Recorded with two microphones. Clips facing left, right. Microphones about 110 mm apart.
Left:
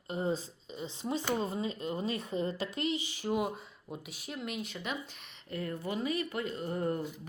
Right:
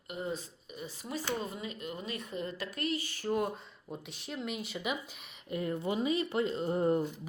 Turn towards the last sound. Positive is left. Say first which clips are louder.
# right 4 dB
turn(degrees=-20)  # may be behind; listen again after turning